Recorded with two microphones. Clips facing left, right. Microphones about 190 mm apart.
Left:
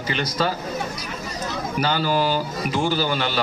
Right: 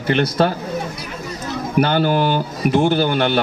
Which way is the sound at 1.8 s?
55° right (ahead or behind).